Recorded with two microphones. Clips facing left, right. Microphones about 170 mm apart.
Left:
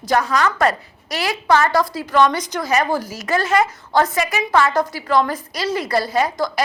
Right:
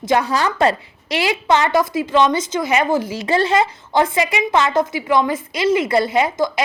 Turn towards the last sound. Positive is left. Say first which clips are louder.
# right 2 dB
turn(degrees=-20)  # may be behind; listen again after turning